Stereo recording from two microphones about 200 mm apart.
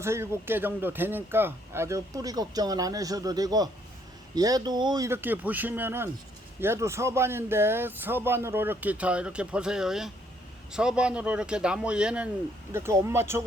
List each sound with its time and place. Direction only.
0.0 s a man's voice: 15° right (ahead or behind)